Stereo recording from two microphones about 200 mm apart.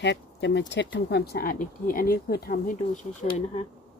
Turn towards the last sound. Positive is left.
turn(degrees=35)  # may be behind; listen again after turning